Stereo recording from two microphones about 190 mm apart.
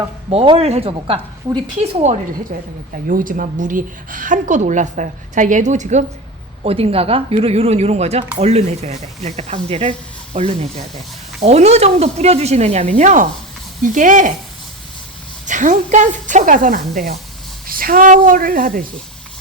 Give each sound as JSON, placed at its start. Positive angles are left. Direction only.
{"t": 0.3, "sound": "speech", "side_deg": -30}
{"t": 2.5, "sound": "a woman's voice", "side_deg": -45}
{"t": 15.4, "sound": "a woman's voice", "side_deg": -40}